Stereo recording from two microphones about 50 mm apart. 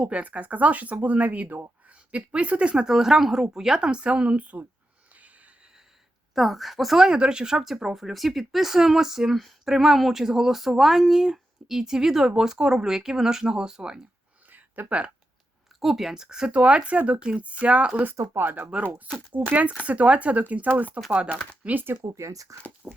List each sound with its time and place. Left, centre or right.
0.0 s speech: right
6.3 s a woman's voice: centre
6.9 s speech: centre
14.5 s a sound: right
15.8 s speech: centre
16.5 s speech: right
18.3 s speech: right
21.7 s speech: right
22.5 s speech: right